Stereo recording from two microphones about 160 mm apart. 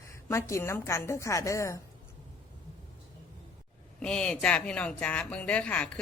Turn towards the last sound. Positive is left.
turn(degrees=10)  # may be behind; listen again after turning